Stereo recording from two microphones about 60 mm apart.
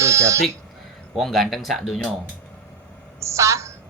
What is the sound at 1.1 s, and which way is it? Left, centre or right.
Speech, centre.